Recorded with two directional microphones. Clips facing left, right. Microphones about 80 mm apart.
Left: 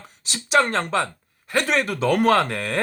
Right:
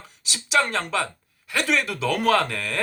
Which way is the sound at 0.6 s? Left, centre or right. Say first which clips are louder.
Left 3 dB; left.